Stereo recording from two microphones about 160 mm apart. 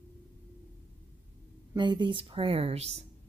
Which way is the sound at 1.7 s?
30° right (ahead or behind).